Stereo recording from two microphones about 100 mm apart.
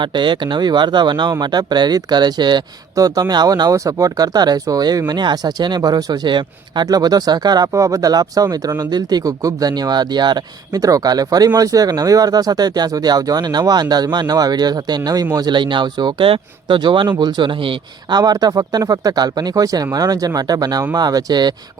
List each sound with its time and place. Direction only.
0.0 s speech: 50° right (ahead or behind)
15.5 s speech: 50° right (ahead or behind)
16.2 s speech: 60° right (ahead or behind)
18.1 s speech: 40° right (ahead or behind)